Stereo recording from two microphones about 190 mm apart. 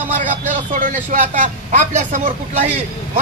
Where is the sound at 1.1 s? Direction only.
40° right (ahead or behind).